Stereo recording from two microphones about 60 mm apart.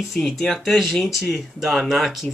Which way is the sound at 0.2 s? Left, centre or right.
Centre.